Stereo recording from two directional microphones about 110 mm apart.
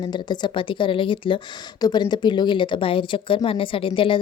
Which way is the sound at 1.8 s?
40° left (ahead or behind).